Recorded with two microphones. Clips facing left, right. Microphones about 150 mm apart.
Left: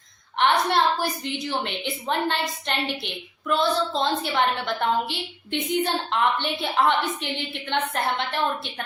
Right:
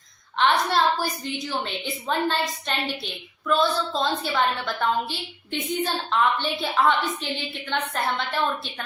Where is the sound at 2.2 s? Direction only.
20° left (ahead or behind).